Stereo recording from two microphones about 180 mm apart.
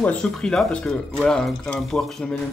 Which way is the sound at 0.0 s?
5° left (ahead or behind).